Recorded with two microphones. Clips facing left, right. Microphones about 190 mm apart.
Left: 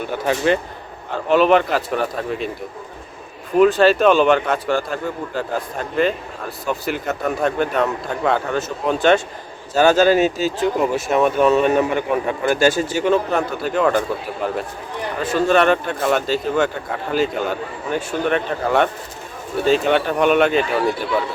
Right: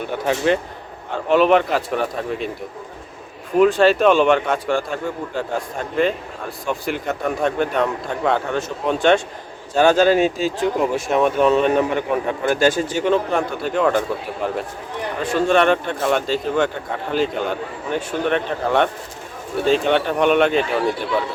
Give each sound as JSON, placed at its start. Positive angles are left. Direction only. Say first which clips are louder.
{"t": 0.3, "sound": "speech", "louder": "even", "side_deg": 0}
{"t": 3.6, "sound": "speech", "louder": "left 1 dB", "side_deg": 0}